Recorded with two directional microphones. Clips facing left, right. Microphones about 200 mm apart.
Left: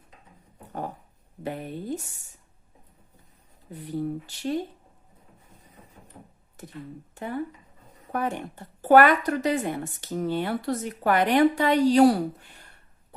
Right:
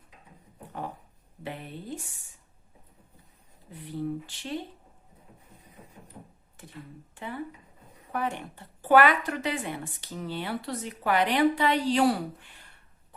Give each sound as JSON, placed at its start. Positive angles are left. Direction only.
{"t": 1.5, "sound": "a woman's voice", "side_deg": 45}
{"t": 3.7, "sound": "a woman's voice", "side_deg": 45}
{"t": 6.6, "sound": "a woman's voice", "side_deg": 40}